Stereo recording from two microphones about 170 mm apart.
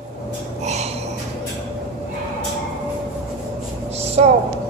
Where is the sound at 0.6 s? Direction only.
40° right (ahead or behind).